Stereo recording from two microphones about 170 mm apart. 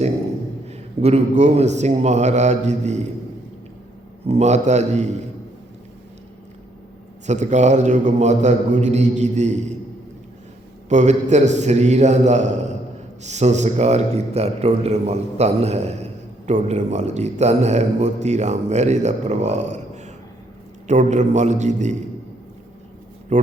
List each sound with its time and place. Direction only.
0.7 s a man's voice: 40° right (ahead or behind)
4.3 s a man's voice: 40° right (ahead or behind)
7.3 s a man's voice: 45° right (ahead or behind)
10.8 s a man's voice: 45° right (ahead or behind)
23.3 s a man's voice: 45° right (ahead or behind)